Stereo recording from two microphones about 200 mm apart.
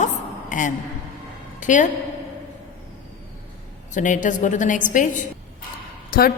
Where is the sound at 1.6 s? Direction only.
40° left (ahead or behind).